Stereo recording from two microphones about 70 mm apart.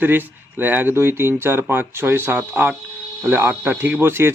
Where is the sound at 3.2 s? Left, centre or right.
Right.